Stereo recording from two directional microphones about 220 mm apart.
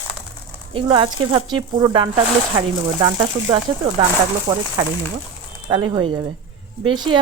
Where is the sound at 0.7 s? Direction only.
20° right (ahead or behind).